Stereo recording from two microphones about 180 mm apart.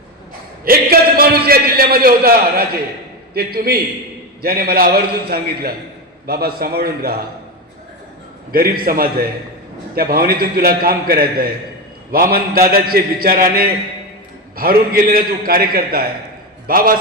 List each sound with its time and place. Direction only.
0.6 s a man's voice: 55° right (ahead or behind)
8.5 s a man's voice: 55° right (ahead or behind)